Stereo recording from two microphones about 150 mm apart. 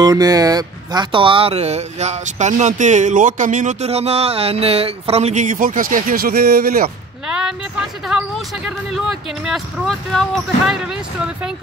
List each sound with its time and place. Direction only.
0.0 s speech: 25° right (ahead or behind); by 6.9 s 75° right (ahead or behind)
7.2 s speech: 5° right (ahead or behind)